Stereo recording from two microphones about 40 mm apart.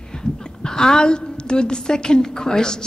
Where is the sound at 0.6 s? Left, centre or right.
Centre.